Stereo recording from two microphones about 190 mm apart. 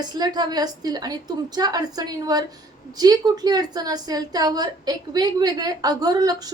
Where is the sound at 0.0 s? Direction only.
20° right (ahead or behind).